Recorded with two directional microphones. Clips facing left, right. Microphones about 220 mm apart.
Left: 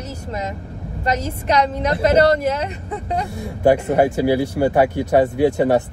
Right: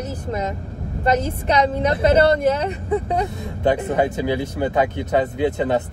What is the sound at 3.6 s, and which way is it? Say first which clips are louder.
Speech: left 4 dB; 10° left (ahead or behind).